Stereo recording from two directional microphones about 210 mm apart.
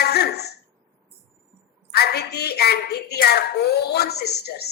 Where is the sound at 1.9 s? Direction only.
50° left (ahead or behind).